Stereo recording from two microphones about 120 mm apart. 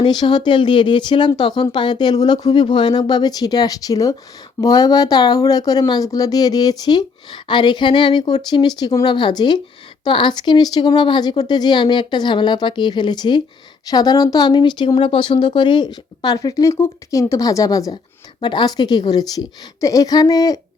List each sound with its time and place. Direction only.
0.0 s speech: 40° left (ahead or behind)
18.3 s speech: 40° left (ahead or behind)